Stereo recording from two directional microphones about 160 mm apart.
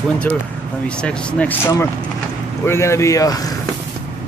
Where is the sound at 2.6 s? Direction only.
15° left (ahead or behind).